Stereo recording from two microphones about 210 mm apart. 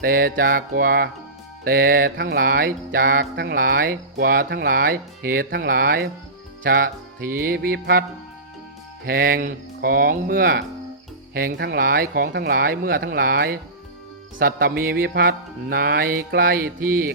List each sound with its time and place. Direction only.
0.0 s mantra: 45° right (ahead or behind)
9.0 s mantra: 45° right (ahead or behind)